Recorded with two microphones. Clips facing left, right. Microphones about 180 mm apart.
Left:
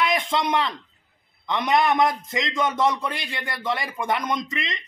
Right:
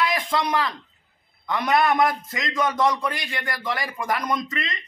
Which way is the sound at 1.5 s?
20° left (ahead or behind).